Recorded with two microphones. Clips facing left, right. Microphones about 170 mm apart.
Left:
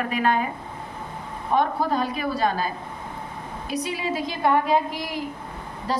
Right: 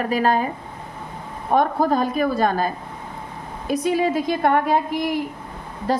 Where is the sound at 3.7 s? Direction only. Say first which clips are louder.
Right 8 dB; 50° right (ahead or behind).